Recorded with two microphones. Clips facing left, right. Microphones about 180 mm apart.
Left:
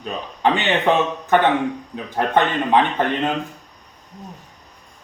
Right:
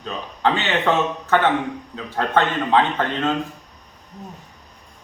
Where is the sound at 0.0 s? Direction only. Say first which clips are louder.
Left 1 dB; 15° left (ahead or behind).